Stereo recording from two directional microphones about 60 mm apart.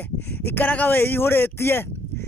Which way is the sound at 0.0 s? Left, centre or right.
Left.